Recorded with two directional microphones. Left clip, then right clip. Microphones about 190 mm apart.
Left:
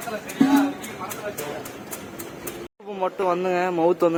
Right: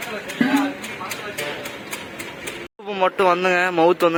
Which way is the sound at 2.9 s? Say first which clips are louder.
Right 6 dB; centre (ahead or behind).